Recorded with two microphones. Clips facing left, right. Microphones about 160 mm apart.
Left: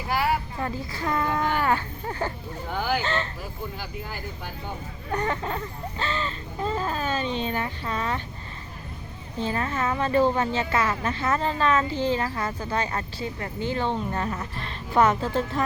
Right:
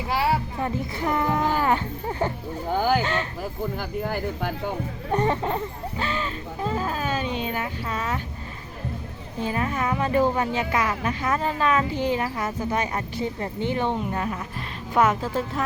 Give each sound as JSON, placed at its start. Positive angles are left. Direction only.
{"t": 0.1, "sound": "speech", "side_deg": -25}
{"t": 2.6, "sound": "speech", "side_deg": -40}
{"t": 3.0, "sound": "a woman's voice", "side_deg": -10}
{"t": 3.8, "sound": "speech", "side_deg": -55}
{"t": 5.1, "sound": "a woman's voice", "side_deg": -25}
{"t": 9.4, "sound": "a woman's voice", "side_deg": -10}